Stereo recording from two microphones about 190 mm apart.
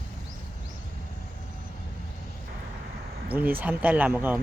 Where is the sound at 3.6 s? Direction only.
10° right (ahead or behind).